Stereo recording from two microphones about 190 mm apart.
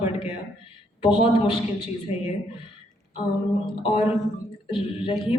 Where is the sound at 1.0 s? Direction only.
25° left (ahead or behind).